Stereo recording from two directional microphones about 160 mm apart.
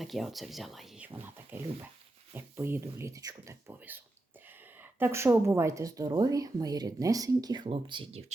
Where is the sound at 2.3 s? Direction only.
15° right (ahead or behind); by 8.2 s 35° right (ahead or behind).